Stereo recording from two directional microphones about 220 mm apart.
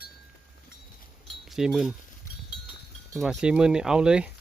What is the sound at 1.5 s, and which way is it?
Speech, centre (ahead or behind).